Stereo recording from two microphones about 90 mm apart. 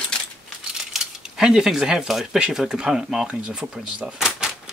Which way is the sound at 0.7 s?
5° right (ahead or behind).